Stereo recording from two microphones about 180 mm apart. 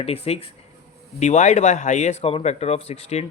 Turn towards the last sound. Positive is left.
turn(degrees=35)  # may be behind; listen again after turning